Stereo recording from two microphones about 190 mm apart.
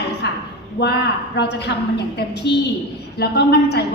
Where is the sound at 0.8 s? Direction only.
60° left (ahead or behind).